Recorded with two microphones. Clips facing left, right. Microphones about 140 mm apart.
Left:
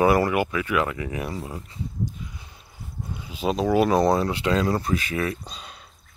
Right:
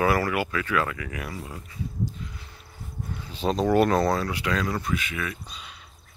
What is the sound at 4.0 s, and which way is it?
Speech, 20° left (ahead or behind).